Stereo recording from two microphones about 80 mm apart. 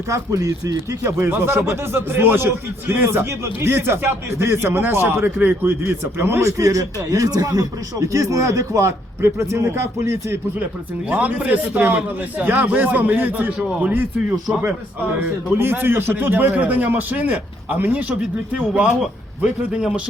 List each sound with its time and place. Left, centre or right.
0.1 s speech: right
1.0 s speech: right
6.6 s speech: right
11.1 s speech: centre
15.5 s speech: right
19.4 s a man's voice: centre